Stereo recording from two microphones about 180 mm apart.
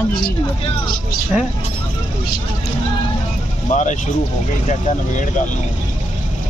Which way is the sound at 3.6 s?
40° left (ahead or behind).